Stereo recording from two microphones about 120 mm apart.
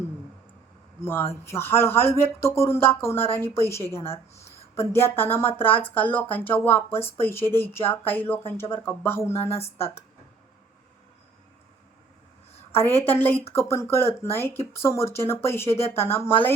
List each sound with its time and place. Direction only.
1.0 s speech: 20° left (ahead or behind)
4.4 s a sound: 20° left (ahead or behind)
4.9 s speech: 20° left (ahead or behind)
13.1 s speech: 15° left (ahead or behind)